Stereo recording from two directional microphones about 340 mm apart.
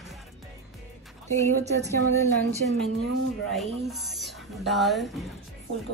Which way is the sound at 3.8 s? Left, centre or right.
Centre.